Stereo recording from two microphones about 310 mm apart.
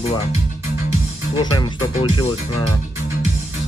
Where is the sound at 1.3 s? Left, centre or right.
Centre.